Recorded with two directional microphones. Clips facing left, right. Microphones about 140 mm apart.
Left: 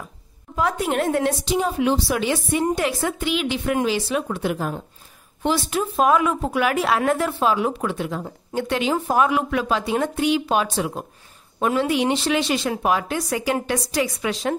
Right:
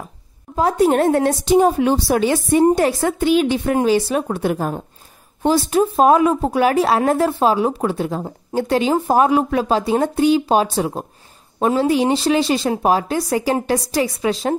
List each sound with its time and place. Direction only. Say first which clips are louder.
0.6 s a woman's voice: right 7 dB; 35° right (ahead or behind)